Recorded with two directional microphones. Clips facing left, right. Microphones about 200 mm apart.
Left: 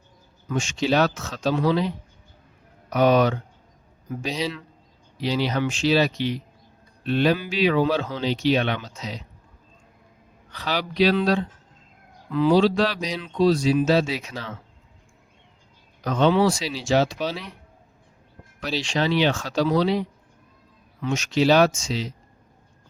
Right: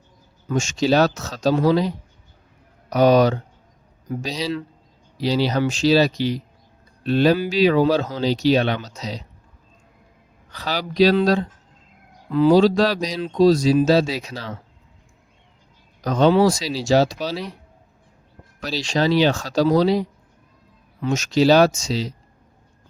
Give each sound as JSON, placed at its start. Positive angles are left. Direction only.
{"t": 0.4, "sound": "speech", "side_deg": -45}
{"t": 2.9, "sound": "speech", "side_deg": -35}
{"t": 10.5, "sound": "speech", "side_deg": -40}
{"t": 16.0, "sound": "speech", "side_deg": -40}
{"t": 18.6, "sound": "speech", "side_deg": -40}